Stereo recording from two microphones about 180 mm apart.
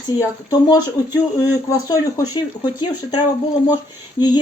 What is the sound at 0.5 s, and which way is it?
Speech, 20° left (ahead or behind).